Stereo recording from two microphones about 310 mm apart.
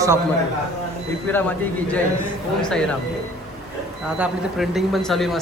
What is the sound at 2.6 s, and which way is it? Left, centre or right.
Speech, centre.